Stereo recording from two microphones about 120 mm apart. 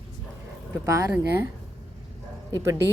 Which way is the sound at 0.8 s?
30° right (ahead or behind).